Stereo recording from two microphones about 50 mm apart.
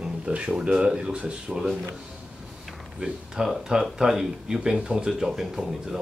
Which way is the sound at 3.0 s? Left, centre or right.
Centre.